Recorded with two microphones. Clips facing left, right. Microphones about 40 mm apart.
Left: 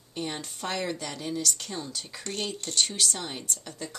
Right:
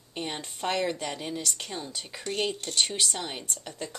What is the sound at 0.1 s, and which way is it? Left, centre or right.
Speech, right.